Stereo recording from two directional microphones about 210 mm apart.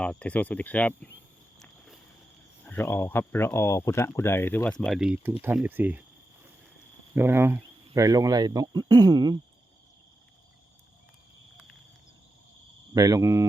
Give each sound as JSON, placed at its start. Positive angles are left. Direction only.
{"t": 0.0, "sound": "speech", "side_deg": 5}
{"t": 1.5, "sound": "a sound", "side_deg": 0}
{"t": 2.6, "sound": "speech", "side_deg": 10}
{"t": 7.2, "sound": "speech", "side_deg": -10}
{"t": 12.9, "sound": "speech", "side_deg": -15}